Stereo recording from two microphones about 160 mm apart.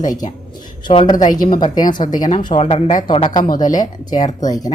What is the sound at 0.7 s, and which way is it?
A woman's voice, 30° left (ahead or behind).